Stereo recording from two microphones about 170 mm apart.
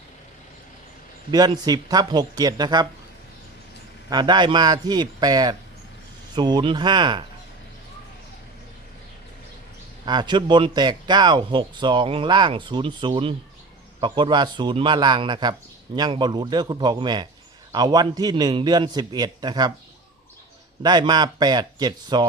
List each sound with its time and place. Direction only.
1.3 s speech: 25° right (ahead or behind)
4.1 s speech: 25° right (ahead or behind)
10.1 s speech: 25° right (ahead or behind)
20.8 s speech: 25° right (ahead or behind)